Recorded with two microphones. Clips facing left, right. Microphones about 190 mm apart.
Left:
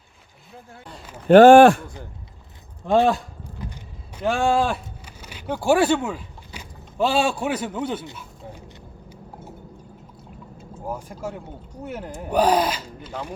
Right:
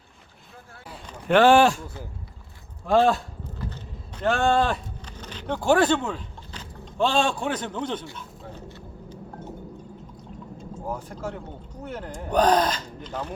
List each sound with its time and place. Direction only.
1.3 s speech: 45° left (ahead or behind)
2.8 s speech: 15° left (ahead or behind)
3.6 s a sound: 10° left (ahead or behind)
10.6 s speech: 10° left (ahead or behind)